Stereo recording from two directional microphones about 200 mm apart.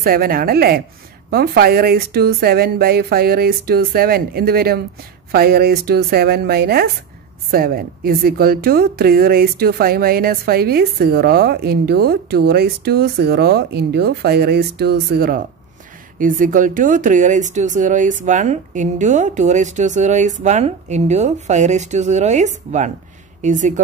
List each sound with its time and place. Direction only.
0.0 s speech: 45° right (ahead or behind)